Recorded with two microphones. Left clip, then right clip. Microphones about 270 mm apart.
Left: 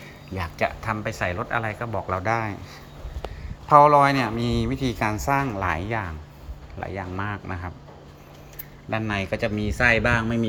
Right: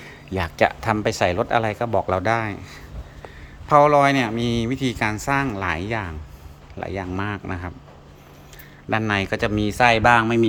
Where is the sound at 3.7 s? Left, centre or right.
Centre.